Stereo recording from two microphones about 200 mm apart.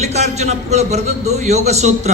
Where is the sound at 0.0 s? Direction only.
35° right (ahead or behind).